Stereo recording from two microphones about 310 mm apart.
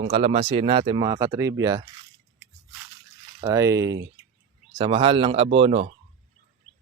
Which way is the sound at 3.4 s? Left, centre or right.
Centre.